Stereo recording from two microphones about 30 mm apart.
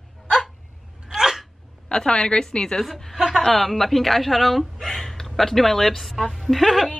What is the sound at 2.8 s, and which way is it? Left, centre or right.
A woman's voice, centre.